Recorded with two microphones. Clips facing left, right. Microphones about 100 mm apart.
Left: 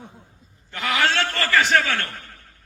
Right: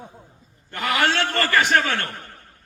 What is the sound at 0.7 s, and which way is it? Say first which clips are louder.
Speech: right 1 dB; 50° right (ahead or behind).